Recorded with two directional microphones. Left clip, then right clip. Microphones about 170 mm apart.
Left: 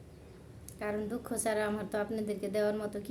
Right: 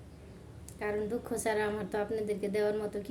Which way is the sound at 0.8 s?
10° left (ahead or behind).